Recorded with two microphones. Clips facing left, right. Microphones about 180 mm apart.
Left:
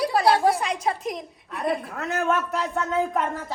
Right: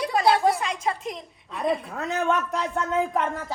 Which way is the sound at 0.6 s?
35° left (ahead or behind).